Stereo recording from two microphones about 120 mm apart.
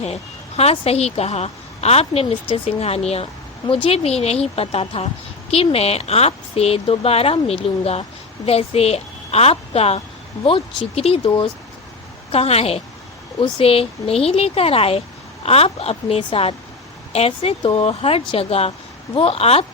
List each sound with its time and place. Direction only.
0.0 s a woman's voice: 60° left (ahead or behind)
11.3 s speech: 40° left (ahead or behind)
12.3 s a woman's voice: 55° left (ahead or behind)
17.7 s speech: 45° left (ahead or behind)